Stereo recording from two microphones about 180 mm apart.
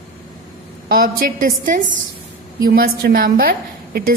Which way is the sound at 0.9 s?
55° right (ahead or behind).